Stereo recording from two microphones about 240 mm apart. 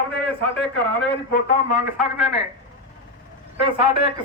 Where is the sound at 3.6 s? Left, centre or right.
Centre.